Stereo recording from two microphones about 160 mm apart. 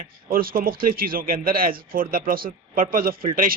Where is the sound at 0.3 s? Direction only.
65° right (ahead or behind).